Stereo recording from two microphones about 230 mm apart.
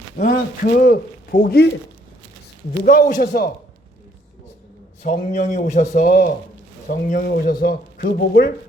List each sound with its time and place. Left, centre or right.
0.2 s speech: left
2.8 s speech: left
5.0 s speech: left